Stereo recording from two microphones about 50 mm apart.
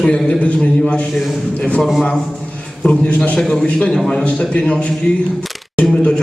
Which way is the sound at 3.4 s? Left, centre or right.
Centre.